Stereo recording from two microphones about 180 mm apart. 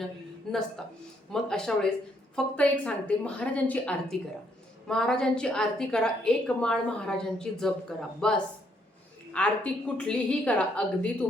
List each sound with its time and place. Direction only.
0.5 s a woman's voice: centre (ahead or behind)